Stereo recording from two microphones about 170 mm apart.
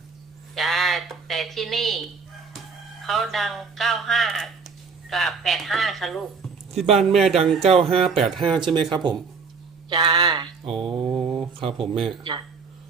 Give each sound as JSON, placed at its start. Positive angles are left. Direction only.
{"t": 0.5, "sound": "a sound", "side_deg": 0}
{"t": 3.0, "sound": "speech", "side_deg": 0}
{"t": 7.6, "sound": "speech", "side_deg": -35}
{"t": 8.0, "sound": "speech", "side_deg": 0}
{"t": 8.4, "sound": "speech", "side_deg": -25}
{"t": 9.9, "sound": "mantra", "side_deg": -25}
{"t": 11.8, "sound": "speech", "side_deg": 0}